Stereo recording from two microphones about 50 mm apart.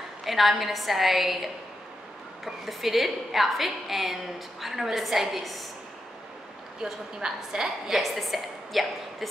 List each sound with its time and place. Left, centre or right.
0.2 s a woman's voice: centre
6.8 s a woman's voice: centre
8.0 s a woman's voice: centre